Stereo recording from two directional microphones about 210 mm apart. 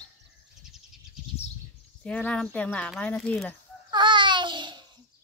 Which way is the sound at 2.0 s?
5° left (ahead or behind).